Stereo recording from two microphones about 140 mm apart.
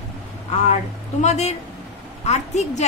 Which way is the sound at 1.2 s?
55° left (ahead or behind).